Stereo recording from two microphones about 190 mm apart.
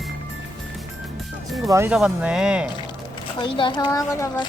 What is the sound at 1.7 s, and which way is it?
Speech, 15° right (ahead or behind).